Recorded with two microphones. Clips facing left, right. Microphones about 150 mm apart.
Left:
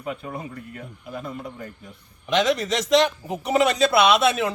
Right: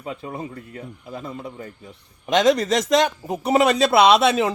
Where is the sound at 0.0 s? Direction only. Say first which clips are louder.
Right 1 dB; 25° right (ahead or behind).